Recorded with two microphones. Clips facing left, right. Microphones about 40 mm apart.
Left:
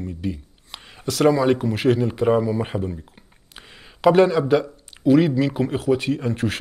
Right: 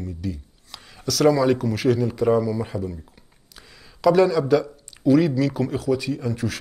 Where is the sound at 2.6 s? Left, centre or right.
Left.